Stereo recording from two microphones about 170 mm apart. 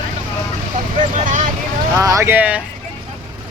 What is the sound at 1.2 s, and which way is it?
Speech, 50° right (ahead or behind).